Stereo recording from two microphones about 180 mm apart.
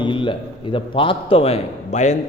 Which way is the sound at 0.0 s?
25° left (ahead or behind).